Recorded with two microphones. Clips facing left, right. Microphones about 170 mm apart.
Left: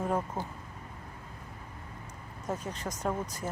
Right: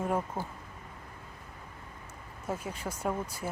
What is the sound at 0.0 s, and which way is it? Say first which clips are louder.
Speech: even; 10° right (ahead or behind).